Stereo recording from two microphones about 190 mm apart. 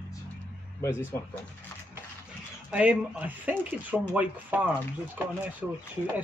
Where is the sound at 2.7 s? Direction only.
5° right (ahead or behind).